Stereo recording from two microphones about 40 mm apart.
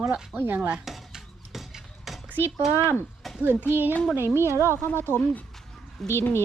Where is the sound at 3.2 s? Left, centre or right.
Centre.